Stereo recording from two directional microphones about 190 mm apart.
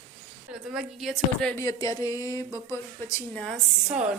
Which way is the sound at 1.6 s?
20° left (ahead or behind).